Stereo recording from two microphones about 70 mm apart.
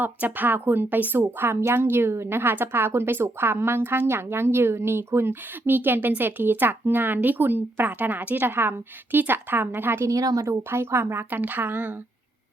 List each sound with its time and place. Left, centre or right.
0.0 s a woman's voice: right
10.1 s speech: right
10.4 s a woman's voice: right